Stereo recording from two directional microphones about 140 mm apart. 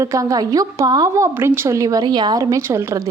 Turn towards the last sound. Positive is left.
turn(degrees=-20)  # may be behind; listen again after turning